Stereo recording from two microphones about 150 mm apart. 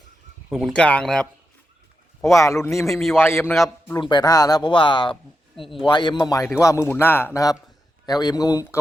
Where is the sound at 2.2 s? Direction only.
20° left (ahead or behind).